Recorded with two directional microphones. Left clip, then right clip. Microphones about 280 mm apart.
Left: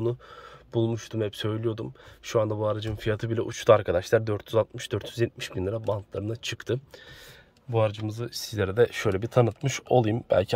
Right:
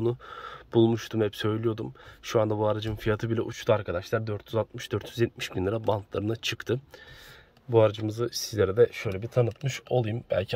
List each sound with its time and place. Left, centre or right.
0.0 s speech: centre